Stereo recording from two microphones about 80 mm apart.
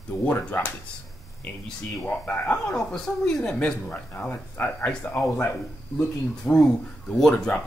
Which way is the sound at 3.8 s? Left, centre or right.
Left.